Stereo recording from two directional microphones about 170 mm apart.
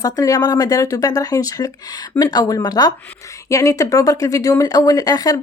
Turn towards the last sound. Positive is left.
turn(degrees=20)  # may be behind; listen again after turning